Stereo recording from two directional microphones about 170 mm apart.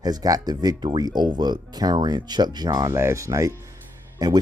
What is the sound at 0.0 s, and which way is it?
Speech, 20° right (ahead or behind).